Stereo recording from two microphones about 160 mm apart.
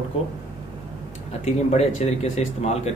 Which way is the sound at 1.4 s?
45° left (ahead or behind).